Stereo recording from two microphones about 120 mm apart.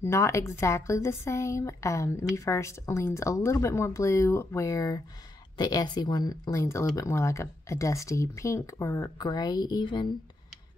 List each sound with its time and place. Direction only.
0.0 s speech: 25° left (ahead or behind)